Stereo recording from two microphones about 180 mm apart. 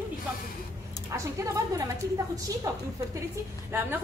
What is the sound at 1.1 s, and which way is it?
Speech, 15° right (ahead or behind).